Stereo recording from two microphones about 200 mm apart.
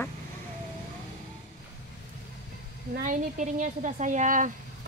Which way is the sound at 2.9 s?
40° right (ahead or behind).